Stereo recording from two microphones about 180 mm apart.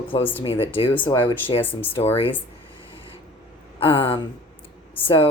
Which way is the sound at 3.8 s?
30° left (ahead or behind).